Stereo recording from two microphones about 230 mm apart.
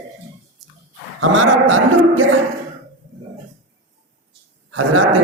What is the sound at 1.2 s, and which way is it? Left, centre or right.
A man's voice, right.